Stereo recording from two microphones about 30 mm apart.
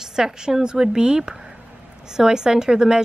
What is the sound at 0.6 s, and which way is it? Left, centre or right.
Speech, right.